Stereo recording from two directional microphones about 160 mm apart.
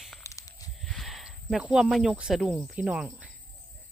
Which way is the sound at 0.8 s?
Centre (ahead or behind).